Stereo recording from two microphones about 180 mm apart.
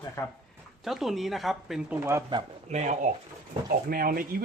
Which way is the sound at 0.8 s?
Centre (ahead or behind).